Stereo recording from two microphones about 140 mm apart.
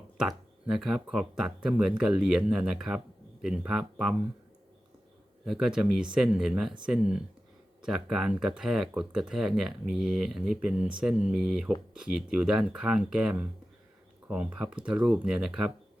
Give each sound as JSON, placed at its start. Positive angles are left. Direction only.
{"t": 0.2, "sound": "speech", "side_deg": -5}
{"t": 5.5, "sound": "speech", "side_deg": -5}